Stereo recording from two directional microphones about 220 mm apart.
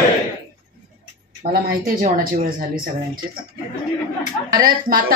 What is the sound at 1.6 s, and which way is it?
Speech, 40° right (ahead or behind).